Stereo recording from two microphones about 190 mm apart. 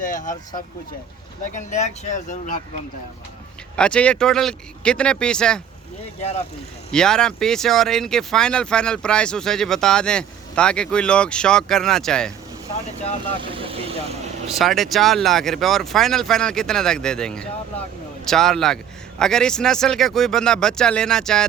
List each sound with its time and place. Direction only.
0.0 s speech: 40° left (ahead or behind)
3.8 s speech: 5° left (ahead or behind)
6.9 s speech: 5° left (ahead or behind)
13.5 s vehicle: 30° right (ahead or behind)
14.6 s speech: centre (ahead or behind)